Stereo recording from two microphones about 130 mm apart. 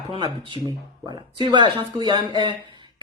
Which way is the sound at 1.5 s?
35° right (ahead or behind).